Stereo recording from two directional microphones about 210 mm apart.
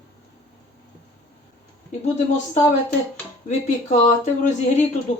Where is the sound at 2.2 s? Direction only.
35° left (ahead or behind).